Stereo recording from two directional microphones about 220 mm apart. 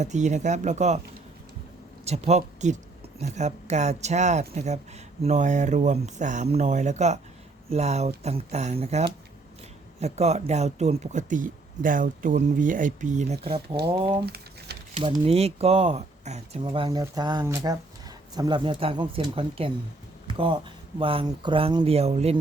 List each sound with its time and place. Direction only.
0.0 s speech: 35° right (ahead or behind)
2.0 s speech: 30° right (ahead or behind)
14.3 s crumpling: 45° right (ahead or behind)
15.2 s speech: 25° right (ahead or behind)
20.2 s a sound: 25° right (ahead or behind)
21.0 s speech: 25° right (ahead or behind)